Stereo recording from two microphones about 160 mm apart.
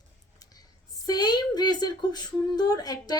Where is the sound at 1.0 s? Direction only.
25° left (ahead or behind).